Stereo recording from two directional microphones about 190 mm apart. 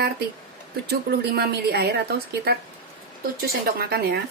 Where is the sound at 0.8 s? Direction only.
55° right (ahead or behind).